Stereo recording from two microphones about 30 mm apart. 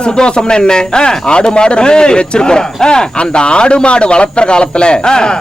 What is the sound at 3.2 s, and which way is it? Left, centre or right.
A man's voice, left.